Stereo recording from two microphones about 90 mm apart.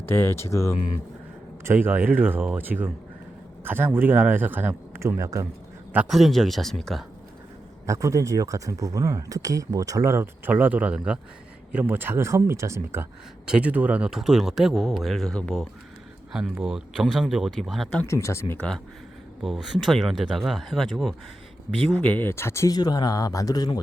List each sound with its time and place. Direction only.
0.0 s speech: 25° left (ahead or behind)
1.6 s speech: 25° right (ahead or behind)
6.1 s speech: centre (ahead or behind)
7.9 s speech: 35° right (ahead or behind)
10.5 s speech: 15° right (ahead or behind)
13.5 s speech: 15° right (ahead or behind); by 15.6 s 10° left (ahead or behind)
16.3 s speech: 10° right (ahead or behind)
18.0 s speech: 30° left (ahead or behind)
18.5 s speech: 10° left (ahead or behind)
19.4 s speech: centre (ahead or behind)
21.9 s speech: 15° left (ahead or behind)
22.7 s speech: 50° left (ahead or behind)